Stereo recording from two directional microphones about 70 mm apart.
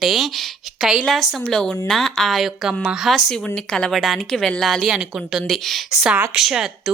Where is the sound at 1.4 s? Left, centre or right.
Centre.